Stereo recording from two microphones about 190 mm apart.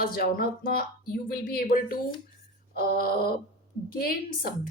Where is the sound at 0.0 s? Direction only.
50° left (ahead or behind).